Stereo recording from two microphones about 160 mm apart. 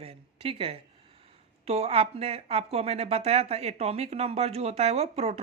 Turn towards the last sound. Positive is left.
turn(degrees=-40)  # may be behind; listen again after turning